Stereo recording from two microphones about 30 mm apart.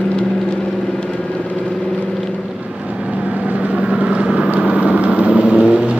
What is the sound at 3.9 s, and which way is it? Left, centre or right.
Vehicle, right.